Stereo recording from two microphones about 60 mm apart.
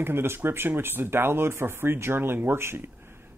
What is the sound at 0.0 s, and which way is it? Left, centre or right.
Speech, right.